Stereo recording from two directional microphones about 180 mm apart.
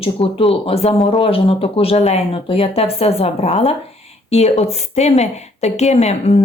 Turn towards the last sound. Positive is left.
turn(degrees=40)  # may be behind; listen again after turning